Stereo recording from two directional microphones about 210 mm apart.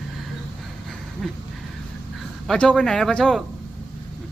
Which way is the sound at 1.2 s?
5° left (ahead or behind).